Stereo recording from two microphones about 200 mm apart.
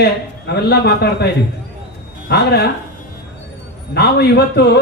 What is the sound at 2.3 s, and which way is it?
Speech, 55° left (ahead or behind).